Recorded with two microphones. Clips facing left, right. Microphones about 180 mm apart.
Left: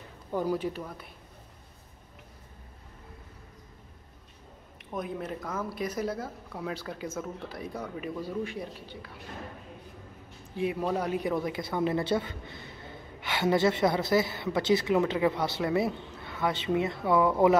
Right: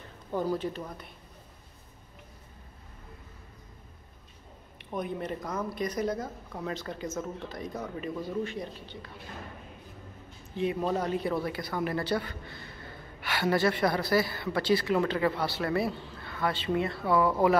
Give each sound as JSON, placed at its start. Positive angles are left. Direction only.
{"t": 0.3, "sound": "speech", "side_deg": 10}
{"t": 4.7, "sound": "a man's voice", "side_deg": 0}
{"t": 10.5, "sound": "a man's voice", "side_deg": 10}